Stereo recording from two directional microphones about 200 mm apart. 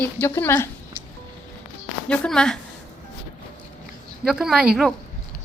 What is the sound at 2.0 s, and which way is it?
Speech, 5° left (ahead or behind).